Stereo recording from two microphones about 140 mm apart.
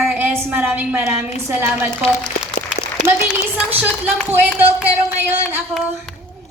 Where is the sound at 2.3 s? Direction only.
55° left (ahead or behind).